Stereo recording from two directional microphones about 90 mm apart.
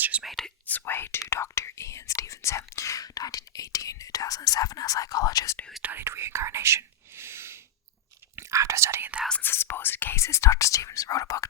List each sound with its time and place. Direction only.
0.0 s speech: 15° right (ahead or behind)
0.3 s whispering: 5° left (ahead or behind)
0.7 s speech: 20° left (ahead or behind); by 5.5 s 45° left (ahead or behind)
5.8 s whispering: 25° right (ahead or behind)
9.4 s speech: 25° left (ahead or behind)